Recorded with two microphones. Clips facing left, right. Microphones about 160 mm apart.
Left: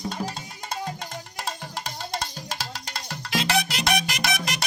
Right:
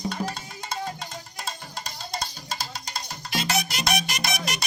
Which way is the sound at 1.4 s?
90° left.